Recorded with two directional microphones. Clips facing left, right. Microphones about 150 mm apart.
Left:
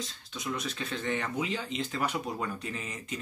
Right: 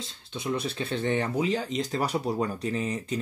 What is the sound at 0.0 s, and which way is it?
Speech, 30° right (ahead or behind).